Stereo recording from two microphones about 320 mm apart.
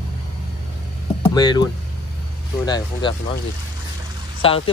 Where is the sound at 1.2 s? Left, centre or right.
Centre.